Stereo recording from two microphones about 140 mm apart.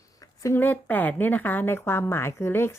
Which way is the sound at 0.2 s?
20° left (ahead or behind).